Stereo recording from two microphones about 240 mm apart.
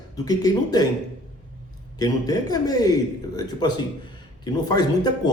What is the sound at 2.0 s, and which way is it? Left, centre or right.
A man's voice, centre.